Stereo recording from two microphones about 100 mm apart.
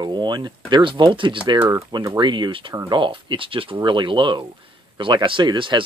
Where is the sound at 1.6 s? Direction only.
30° right (ahead or behind).